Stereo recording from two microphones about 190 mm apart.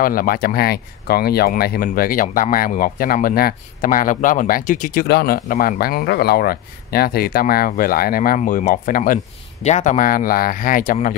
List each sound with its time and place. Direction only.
0.0 s speech: 50° left (ahead or behind)